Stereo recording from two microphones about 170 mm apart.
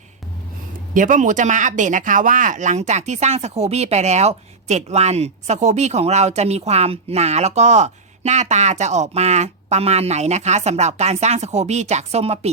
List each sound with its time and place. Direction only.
0.9 s speech: 50° right (ahead or behind)